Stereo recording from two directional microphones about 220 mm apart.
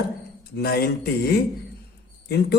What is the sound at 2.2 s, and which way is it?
Speech, 45° left (ahead or behind).